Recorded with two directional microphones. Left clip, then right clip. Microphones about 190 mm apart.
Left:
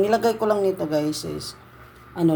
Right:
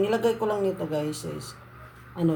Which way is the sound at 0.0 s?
30° left (ahead or behind).